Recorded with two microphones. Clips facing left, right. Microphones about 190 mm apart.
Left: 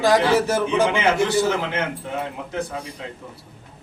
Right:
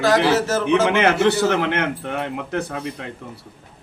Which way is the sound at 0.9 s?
65° right (ahead or behind).